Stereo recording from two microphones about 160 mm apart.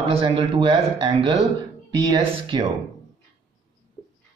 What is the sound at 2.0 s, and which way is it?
Speech, 25° right (ahead or behind).